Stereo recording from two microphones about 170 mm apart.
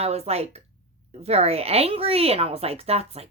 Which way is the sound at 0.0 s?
40° right (ahead or behind).